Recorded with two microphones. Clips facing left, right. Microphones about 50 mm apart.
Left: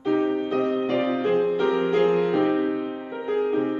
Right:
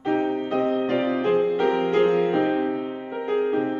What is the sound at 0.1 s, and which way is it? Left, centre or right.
Music, right.